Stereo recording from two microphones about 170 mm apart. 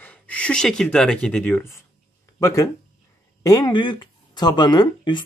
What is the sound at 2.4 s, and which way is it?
Speech, 20° left (ahead or behind).